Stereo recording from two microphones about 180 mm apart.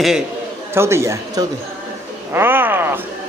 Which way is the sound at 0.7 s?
15° right (ahead or behind).